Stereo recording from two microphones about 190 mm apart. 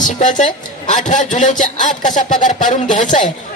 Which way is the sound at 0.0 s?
40° left (ahead or behind).